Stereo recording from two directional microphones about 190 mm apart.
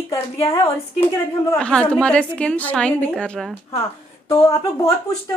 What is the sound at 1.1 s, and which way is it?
A woman's voice, 5° left (ahead or behind).